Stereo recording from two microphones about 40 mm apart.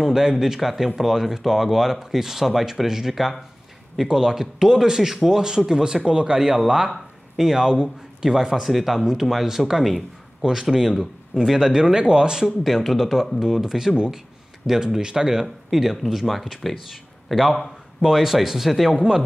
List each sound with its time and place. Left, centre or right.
0.0 s a man's voice: centre
7.3 s speech: centre
8.6 s a man's voice: centre
10.4 s speech: centre
12.4 s a man's voice: centre
18.0 s speech: centre